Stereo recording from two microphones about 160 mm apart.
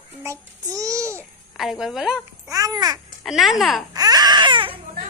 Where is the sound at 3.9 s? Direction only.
25° right (ahead or behind).